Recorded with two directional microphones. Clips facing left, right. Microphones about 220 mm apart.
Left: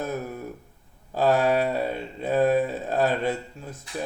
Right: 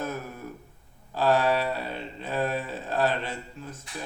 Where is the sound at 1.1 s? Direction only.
45° left (ahead or behind).